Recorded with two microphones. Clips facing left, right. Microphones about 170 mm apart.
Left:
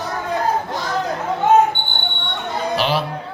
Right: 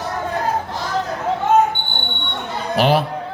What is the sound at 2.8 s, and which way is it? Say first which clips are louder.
Speech: right 6 dB; 50° right (ahead or behind).